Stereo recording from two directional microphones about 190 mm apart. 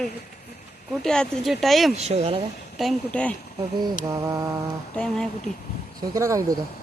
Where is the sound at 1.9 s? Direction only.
35° right (ahead or behind).